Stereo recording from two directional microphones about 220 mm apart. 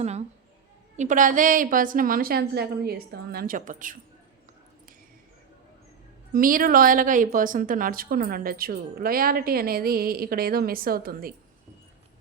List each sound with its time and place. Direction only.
0.0 s a woman's voice: 30° right (ahead or behind)
6.3 s a woman's voice: 40° right (ahead or behind)